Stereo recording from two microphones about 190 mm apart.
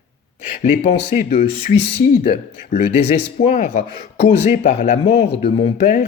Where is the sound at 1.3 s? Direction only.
45° left (ahead or behind).